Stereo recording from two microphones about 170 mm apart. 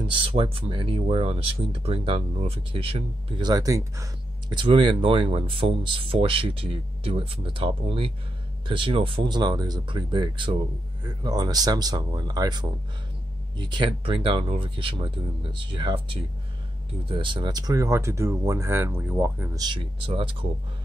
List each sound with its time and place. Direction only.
0.0 s speech: 30° right (ahead or behind); by 19.6 s 10° right (ahead or behind)
19.6 s speech: 30° right (ahead or behind)